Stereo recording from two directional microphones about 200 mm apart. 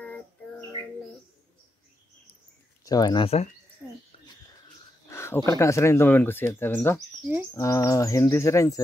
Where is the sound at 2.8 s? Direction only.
20° left (ahead or behind).